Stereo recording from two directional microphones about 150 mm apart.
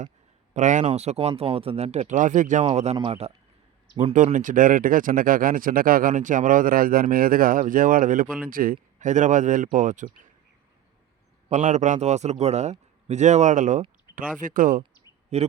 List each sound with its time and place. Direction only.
0.5 s a man's voice: 55° right (ahead or behind)
2.6 s a man's voice: 45° right (ahead or behind)
3.9 s speech: 55° right (ahead or behind)
11.4 s a man's voice: 50° right (ahead or behind)
15.3 s a man's voice: 45° right (ahead or behind)